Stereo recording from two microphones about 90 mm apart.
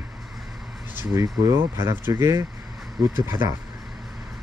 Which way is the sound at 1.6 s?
30° right (ahead or behind).